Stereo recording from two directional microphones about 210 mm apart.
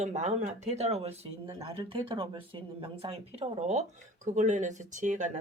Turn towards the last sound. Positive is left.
turn(degrees=-35)  # may be behind; listen again after turning